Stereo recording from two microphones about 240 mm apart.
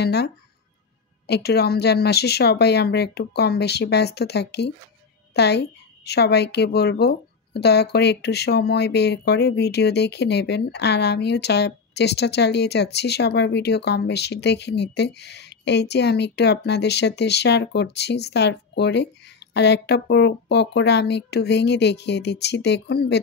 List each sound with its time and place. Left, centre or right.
0.0 s a woman's voice: left